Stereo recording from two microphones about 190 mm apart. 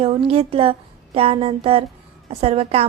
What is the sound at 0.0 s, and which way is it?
A woman's voice, 30° right (ahead or behind).